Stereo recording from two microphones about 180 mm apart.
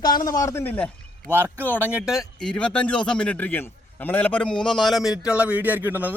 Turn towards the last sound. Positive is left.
turn(degrees=-10)  # may be behind; listen again after turning